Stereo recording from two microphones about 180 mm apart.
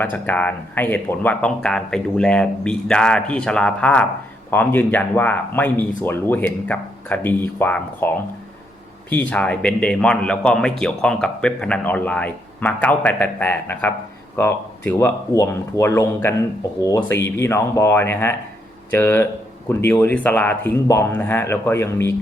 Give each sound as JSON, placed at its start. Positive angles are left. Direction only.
{"t": 0.0, "sound": "a man's voice", "side_deg": 10}